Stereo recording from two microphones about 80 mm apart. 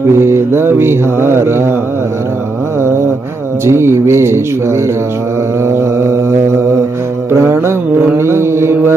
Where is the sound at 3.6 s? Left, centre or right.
Right.